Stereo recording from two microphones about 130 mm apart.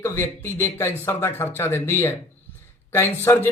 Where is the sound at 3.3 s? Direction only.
20° left (ahead or behind).